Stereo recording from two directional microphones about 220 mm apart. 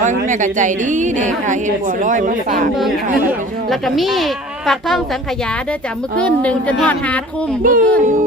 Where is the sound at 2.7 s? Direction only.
Centre (ahead or behind).